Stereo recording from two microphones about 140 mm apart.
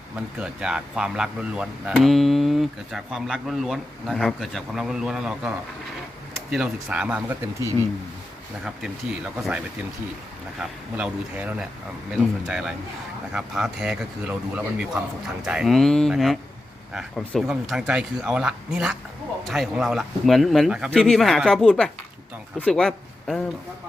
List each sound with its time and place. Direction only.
0.3 s speech: 5° right (ahead or behind)
6.5 s speech: 5° right (ahead or behind)
8.6 s speech: 5° right (ahead or behind)